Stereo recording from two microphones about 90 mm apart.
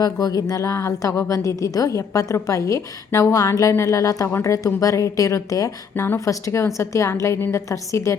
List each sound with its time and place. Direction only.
0.0 s speech: 45° left (ahead or behind)
5.9 s a woman's voice: 20° left (ahead or behind)
6.1 s speech: 35° left (ahead or behind)